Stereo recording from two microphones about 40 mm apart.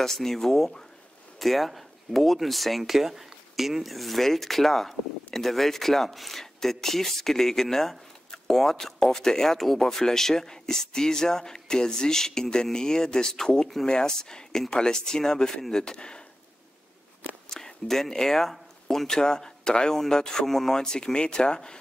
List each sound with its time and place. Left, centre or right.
0.0 s speech: centre
17.5 s speech: centre